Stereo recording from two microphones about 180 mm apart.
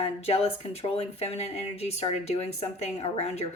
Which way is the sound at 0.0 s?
35° left (ahead or behind).